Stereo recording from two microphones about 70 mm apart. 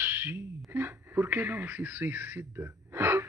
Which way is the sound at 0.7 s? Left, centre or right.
Right.